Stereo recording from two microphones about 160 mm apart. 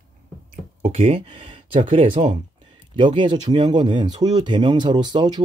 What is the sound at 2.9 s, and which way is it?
Speech, 30° right (ahead or behind).